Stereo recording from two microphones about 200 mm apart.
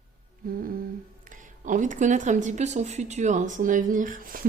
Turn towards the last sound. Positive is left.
turn(degrees=-45)  # may be behind; listen again after turning